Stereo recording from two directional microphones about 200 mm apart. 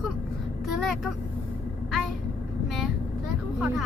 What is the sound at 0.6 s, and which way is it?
Speech, centre (ahead or behind).